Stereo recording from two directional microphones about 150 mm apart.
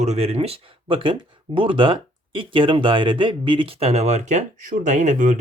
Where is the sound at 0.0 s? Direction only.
45° right (ahead or behind).